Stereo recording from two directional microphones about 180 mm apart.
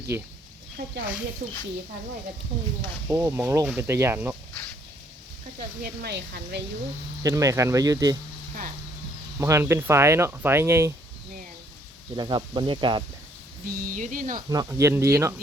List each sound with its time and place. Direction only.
0.1 s speech: 10° right (ahead or behind)
0.8 s speech: 60° right (ahead or behind)
3.1 s speech: 15° right (ahead or behind)
5.8 s speech: 65° right (ahead or behind)
7.2 s speech: 20° right (ahead or behind)
9.4 s speech: 15° right (ahead or behind)
12.1 s speech: 25° right (ahead or behind)
13.7 s speech: 50° right (ahead or behind)
14.5 s speech: 20° right (ahead or behind)